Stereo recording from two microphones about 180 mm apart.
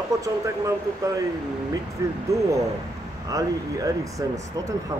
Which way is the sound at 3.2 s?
20° right (ahead or behind).